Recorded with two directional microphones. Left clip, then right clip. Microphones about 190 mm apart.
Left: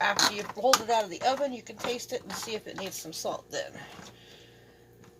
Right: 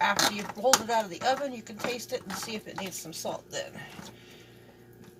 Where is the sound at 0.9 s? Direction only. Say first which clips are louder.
Left 1 dB; 30° left (ahead or behind).